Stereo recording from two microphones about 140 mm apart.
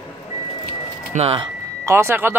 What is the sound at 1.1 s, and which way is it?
Speech, 45° right (ahead or behind).